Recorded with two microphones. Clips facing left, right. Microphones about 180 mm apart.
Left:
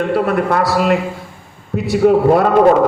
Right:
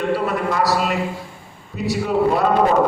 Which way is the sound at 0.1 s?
55° left (ahead or behind).